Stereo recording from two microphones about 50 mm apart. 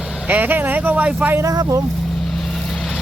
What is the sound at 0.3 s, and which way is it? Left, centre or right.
Speech, right.